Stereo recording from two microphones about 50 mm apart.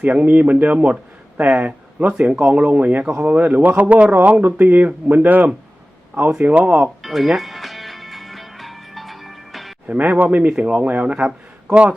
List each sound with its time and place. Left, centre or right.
0.0 s speech: right
6.5 s speech: right
7.0 s music: centre
9.8 s speech: right